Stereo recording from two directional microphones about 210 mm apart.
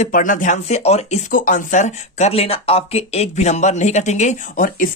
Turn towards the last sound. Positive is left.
turn(degrees=40)  # may be behind; listen again after turning